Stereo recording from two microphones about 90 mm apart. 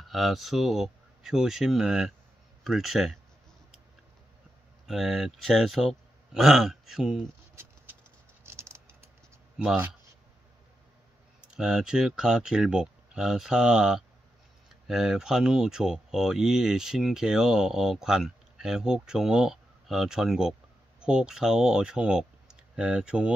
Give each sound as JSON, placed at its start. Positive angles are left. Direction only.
{"t": 0.0, "sound": "speech", "side_deg": 0}
{"t": 4.8, "sound": "speech", "side_deg": -5}
{"t": 8.5, "sound": "a sound", "side_deg": -30}
{"t": 11.5, "sound": "speech", "side_deg": -5}